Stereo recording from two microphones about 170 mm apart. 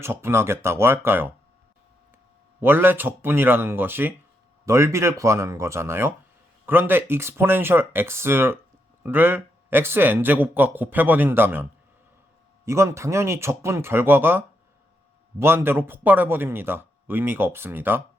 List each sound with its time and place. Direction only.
0.0 s a man's voice: 15° right (ahead or behind)
2.6 s a man's voice: 15° right (ahead or behind)
12.6 s a man's voice: 15° right (ahead or behind)